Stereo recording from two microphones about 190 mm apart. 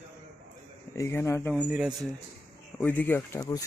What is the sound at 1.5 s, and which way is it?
Speech, 5° right (ahead or behind).